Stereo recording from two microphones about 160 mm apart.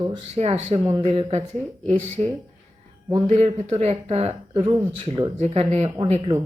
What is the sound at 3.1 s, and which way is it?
Speech, 40° right (ahead or behind).